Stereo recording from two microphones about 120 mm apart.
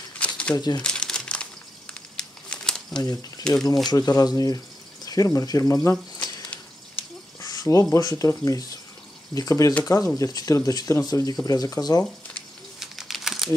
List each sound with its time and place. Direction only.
0.2 s crumpling: 10° left (ahead or behind)
0.6 s speech: 35° left (ahead or behind)
0.8 s crumpling: 5° left (ahead or behind)
3.0 s speech: 30° left (ahead or behind)
7.3 s a sound: 30° left (ahead or behind)
7.9 s speech: 25° left (ahead or behind)
12.7 s crumpling: centre (ahead or behind)